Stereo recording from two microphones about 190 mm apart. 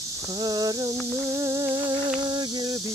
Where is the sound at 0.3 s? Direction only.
20° right (ahead or behind).